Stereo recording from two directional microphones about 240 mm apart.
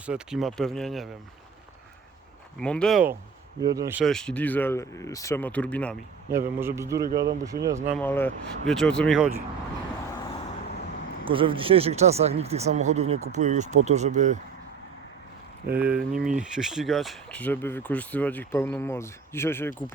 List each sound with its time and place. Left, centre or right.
0.0 s speech: centre
2.6 s speech: centre
3.6 s a man's voice: centre
4.0 s speech: centre
6.6 s a man's voice: centre
7.1 s speech: right
7.4 s a man's voice: centre
7.9 s speech: centre
11.3 s speech: right
15.7 s speech: centre